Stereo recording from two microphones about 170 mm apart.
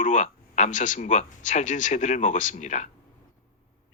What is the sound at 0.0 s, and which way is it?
Speech, 45° left (ahead or behind).